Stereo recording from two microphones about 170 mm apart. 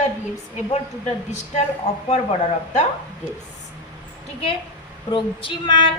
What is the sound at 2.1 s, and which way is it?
Child singing, 40° left (ahead or behind).